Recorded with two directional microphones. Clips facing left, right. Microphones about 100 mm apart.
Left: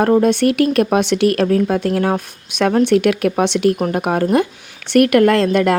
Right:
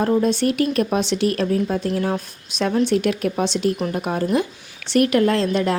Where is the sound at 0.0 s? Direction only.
65° left (ahead or behind).